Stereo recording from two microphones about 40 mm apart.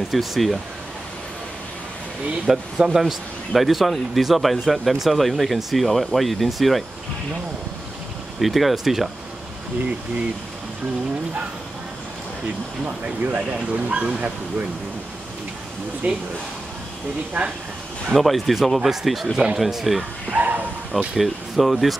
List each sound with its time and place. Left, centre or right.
0.1 s a man's voice: centre
2.4 s a man's voice: centre
8.4 s a man's voice: centre
12.8 s speech: right
16.0 s speech: right
18.1 s a man's voice: centre
20.0 s bow-wow: right
21.1 s a man's voice: centre